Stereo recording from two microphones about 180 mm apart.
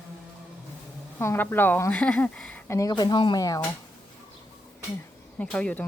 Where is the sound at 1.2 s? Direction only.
15° left (ahead or behind).